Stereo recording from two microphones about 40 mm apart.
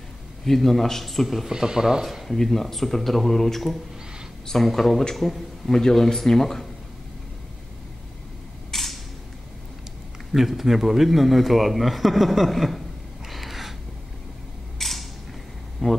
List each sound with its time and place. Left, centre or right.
0.5 s a man's voice: centre
1.5 s speech: centre
2.2 s a man's voice: centre
5.7 s speech: centre
8.7 s creak: centre
10.3 s a man's voice: centre
13.3 s a sound: centre
14.8 s a sound: centre
15.8 s speech: centre